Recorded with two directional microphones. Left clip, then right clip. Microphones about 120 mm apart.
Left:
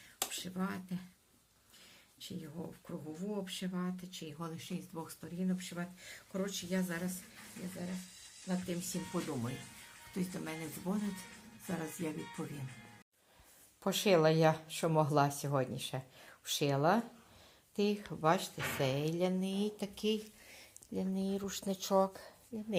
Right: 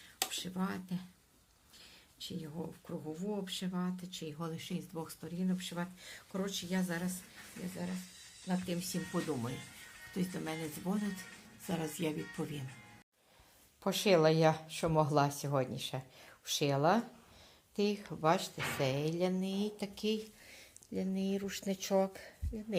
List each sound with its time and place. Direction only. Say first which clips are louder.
0.3 s speech: right 1 dB; 35° right (ahead or behind)
2.1 s speech: right 3 dB; 35° right (ahead or behind)
8.4 s speech: right 1 dB; 45° right (ahead or behind)
10.2 s speech: right 2 dB; 20° right (ahead or behind)
11.7 s speech: right 3 dB; 40° right (ahead or behind)
12.4 s speech: right 3 dB; 25° right (ahead or behind)
13.8 s speech: right 1 dB; centre (ahead or behind)